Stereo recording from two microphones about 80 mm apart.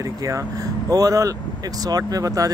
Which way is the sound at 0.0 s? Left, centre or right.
Right.